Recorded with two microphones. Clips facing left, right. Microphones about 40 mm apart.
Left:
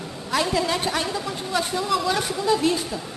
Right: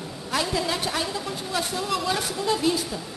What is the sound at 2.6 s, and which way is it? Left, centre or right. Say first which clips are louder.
Speech: left 2 dB; centre.